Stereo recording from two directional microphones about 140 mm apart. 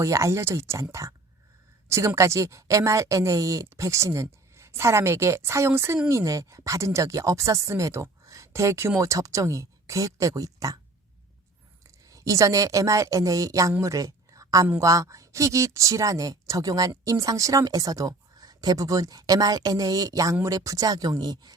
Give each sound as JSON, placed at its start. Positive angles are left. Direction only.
{"t": 0.0, "sound": "speech", "side_deg": -20}
{"t": 12.0, "sound": "speech", "side_deg": -25}
{"t": 13.7, "sound": "a sound", "side_deg": -20}
{"t": 14.7, "sound": "speech", "side_deg": -20}